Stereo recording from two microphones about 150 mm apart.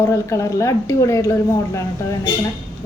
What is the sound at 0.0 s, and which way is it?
Speech, 20° left (ahead or behind).